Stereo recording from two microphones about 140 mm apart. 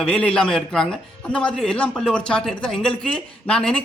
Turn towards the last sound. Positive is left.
turn(degrees=10)  # may be behind; listen again after turning